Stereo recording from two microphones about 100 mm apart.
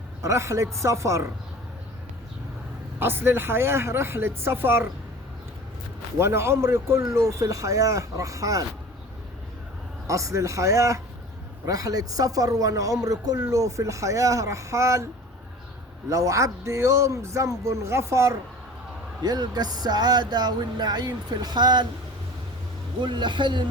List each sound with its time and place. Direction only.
0.2 s speech: 30° right (ahead or behind)
3.0 s speech: 20° right (ahead or behind)
6.1 s speech: 25° right (ahead or behind)
10.1 s speech: 30° right (ahead or behind)
19.2 s speech: 45° right (ahead or behind)
23.0 s speech: 50° right (ahead or behind)